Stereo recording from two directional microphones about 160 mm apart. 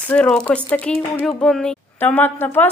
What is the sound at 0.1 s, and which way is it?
Speech, 5° left (ahead or behind).